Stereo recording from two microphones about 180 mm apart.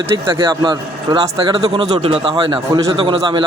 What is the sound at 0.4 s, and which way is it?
A man's voice, 25° right (ahead or behind).